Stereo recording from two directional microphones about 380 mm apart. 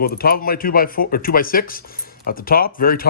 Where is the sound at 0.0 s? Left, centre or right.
Left.